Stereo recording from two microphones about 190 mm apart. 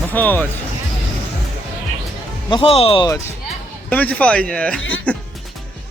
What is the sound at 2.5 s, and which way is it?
Speech, 30° left (ahead or behind).